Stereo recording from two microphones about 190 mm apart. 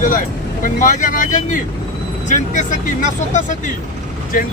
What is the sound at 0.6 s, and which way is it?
Speech, 40° left (ahead or behind).